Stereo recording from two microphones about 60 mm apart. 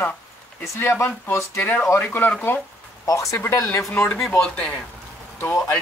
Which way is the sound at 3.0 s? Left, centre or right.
Left.